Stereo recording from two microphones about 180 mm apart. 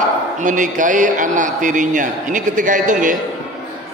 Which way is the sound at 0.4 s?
45° right (ahead or behind).